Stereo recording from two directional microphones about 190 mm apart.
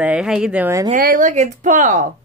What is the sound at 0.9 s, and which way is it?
Speech, 45° right (ahead or behind).